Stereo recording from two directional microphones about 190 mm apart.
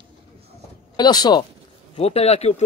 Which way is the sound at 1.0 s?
20° left (ahead or behind).